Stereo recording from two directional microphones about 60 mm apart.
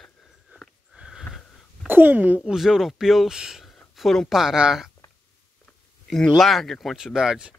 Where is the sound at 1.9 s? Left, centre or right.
Right.